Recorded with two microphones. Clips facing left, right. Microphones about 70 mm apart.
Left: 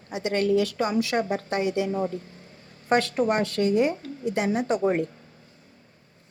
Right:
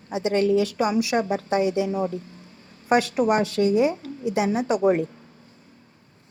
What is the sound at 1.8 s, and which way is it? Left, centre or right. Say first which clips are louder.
Speech: right 2 dB; right.